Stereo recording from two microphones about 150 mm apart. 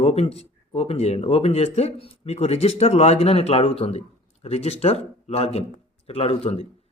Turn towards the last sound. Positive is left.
turn(degrees=40)  # may be behind; listen again after turning